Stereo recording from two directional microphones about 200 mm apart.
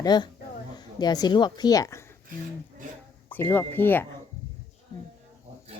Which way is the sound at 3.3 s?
10° left (ahead or behind).